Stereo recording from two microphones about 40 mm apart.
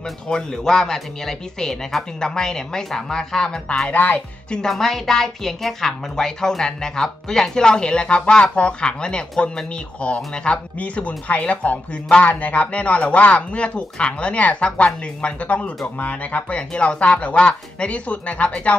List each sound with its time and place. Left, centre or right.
0.3 s a woman's voice: centre
3.9 s speech: left
4.5 s a woman's voice: centre; by 18.8 s left